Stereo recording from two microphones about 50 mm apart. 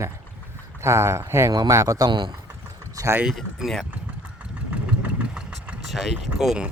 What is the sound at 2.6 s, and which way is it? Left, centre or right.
Vehicle, right.